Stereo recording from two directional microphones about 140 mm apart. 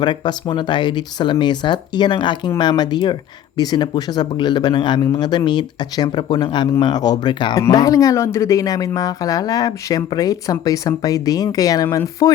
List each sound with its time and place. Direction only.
0.0 s speech: 35° left (ahead or behind)